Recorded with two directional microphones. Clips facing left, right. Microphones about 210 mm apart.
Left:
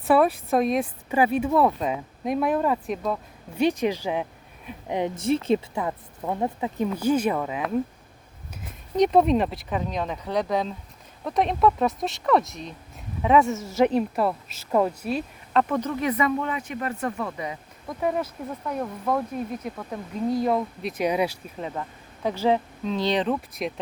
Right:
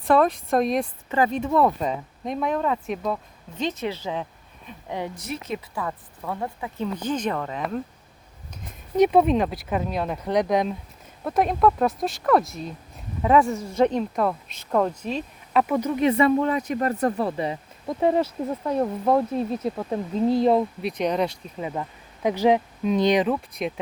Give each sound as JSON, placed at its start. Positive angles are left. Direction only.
{"t": 0.0, "sound": "speech", "side_deg": 5}
{"t": 3.6, "sound": "a woman's voice", "side_deg": 15}
{"t": 6.8, "sound": "speech", "side_deg": 10}
{"t": 9.0, "sound": "speech", "side_deg": -5}
{"t": 11.2, "sound": "speech", "side_deg": -5}
{"t": 15.5, "sound": "speech", "side_deg": -10}
{"t": 16.0, "sound": "speech", "side_deg": -30}
{"t": 20.8, "sound": "speech", "side_deg": 5}
{"t": 21.8, "sound": "speech", "side_deg": -15}
{"t": 23.3, "sound": "speech", "side_deg": 0}